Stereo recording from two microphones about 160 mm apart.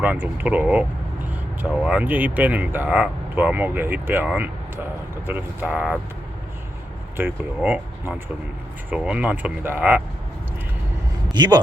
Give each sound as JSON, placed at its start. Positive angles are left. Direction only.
{"t": 0.0, "sound": "speech", "side_deg": -10}
{"t": 7.2, "sound": "speech", "side_deg": -10}
{"t": 11.3, "sound": "a man's voice", "side_deg": -25}